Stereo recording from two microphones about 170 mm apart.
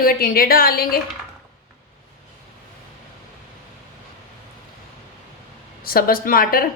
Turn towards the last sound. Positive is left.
turn(degrees=60)  # may be behind; listen again after turning